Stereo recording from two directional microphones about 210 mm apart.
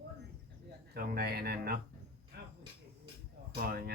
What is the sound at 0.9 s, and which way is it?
Speech, 45° right (ahead or behind).